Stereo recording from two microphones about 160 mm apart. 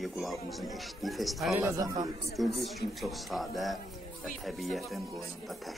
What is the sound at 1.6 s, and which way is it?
Speech, 20° right (ahead or behind).